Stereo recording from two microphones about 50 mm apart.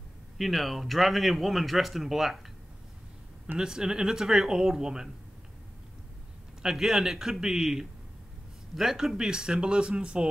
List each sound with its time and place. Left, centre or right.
0.4 s speech: centre
3.5 s speech: centre
6.6 s speech: centre